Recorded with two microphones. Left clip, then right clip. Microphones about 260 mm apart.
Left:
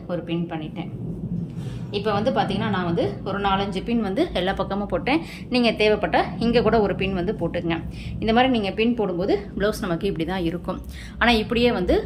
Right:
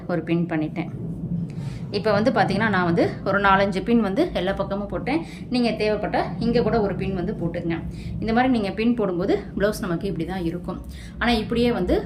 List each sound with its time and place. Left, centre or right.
0.1 s a woman's voice: centre
1.9 s a woman's voice: centre